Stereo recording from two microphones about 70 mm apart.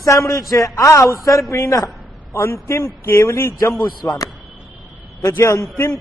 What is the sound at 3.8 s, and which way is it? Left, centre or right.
Speech, left.